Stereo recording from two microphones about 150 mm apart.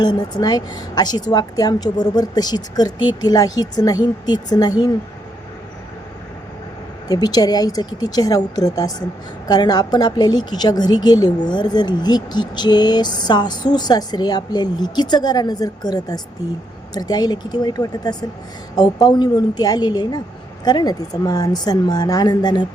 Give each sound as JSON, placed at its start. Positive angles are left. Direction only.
{"t": 0.0, "sound": "speech", "side_deg": 30}
{"t": 7.1, "sound": "speech", "side_deg": 25}